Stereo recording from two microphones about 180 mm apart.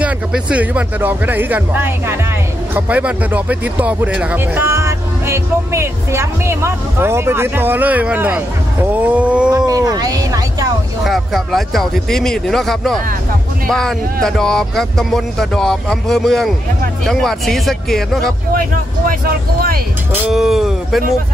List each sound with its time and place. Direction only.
0.0 s speech: 5° right (ahead or behind)
9.7 s speech: 20° right (ahead or behind)
11.1 s speech: centre (ahead or behind)
18.5 s speech: 50° right (ahead or behind)
20.1 s speech: 5° right (ahead or behind)